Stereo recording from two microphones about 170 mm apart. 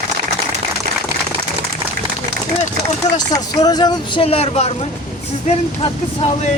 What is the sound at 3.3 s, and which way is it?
Speech, 20° left (ahead or behind).